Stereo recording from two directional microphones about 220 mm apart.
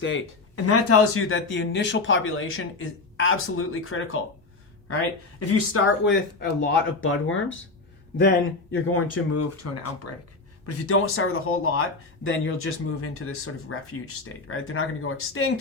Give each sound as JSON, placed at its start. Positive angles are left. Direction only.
{"t": 0.0, "sound": "speech", "side_deg": 75}
{"t": 5.4, "sound": "speech", "side_deg": 80}
{"t": 7.0, "sound": "speech", "side_deg": 65}
{"t": 8.7, "sound": "speech", "side_deg": 90}
{"t": 10.7, "sound": "speech", "side_deg": 80}